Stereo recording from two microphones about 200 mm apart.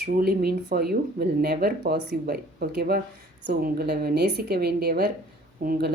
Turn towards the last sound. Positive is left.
turn(degrees=-50)  # may be behind; listen again after turning